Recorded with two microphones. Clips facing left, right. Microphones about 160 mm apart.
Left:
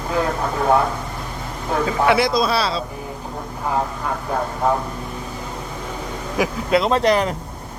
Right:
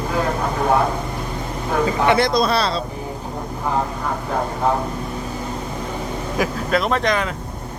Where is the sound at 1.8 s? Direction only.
5° left (ahead or behind).